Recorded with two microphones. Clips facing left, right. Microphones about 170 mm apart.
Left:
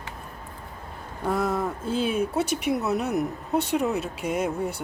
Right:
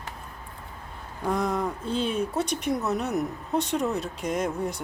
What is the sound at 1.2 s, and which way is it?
Speech, 5° left (ahead or behind).